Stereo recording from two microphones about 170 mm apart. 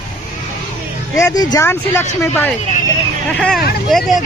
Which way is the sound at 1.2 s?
20° left (ahead or behind).